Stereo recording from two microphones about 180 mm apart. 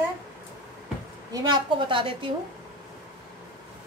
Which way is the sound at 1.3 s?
20° right (ahead or behind).